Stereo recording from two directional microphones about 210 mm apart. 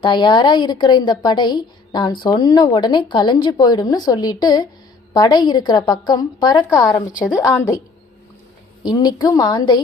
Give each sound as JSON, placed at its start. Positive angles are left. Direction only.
{"t": 0.0, "sound": "a woman's voice", "side_deg": 20}
{"t": 8.8, "sound": "a woman's voice", "side_deg": 20}